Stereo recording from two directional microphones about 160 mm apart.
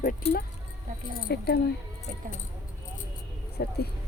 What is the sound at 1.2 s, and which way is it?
Speech, 75° left (ahead or behind).